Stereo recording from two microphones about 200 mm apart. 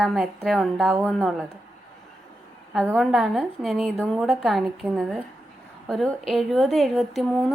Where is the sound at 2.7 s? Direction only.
5° left (ahead or behind).